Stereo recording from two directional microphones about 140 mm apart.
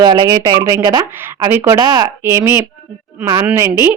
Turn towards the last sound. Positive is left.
turn(degrees=-15)  # may be behind; listen again after turning